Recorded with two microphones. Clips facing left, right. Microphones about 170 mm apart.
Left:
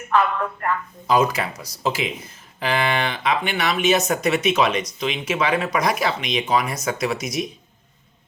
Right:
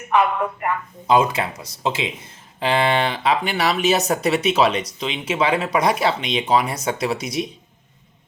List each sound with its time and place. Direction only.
0.1 s speech: 15° right (ahead or behind); by 7.4 s 30° right (ahead or behind)